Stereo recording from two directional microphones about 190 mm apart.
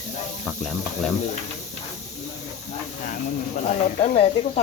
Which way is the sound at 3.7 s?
35° left (ahead or behind).